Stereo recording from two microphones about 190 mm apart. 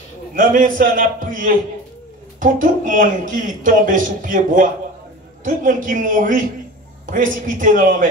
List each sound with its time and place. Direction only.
0.3 s a man's voice: 45° right (ahead or behind)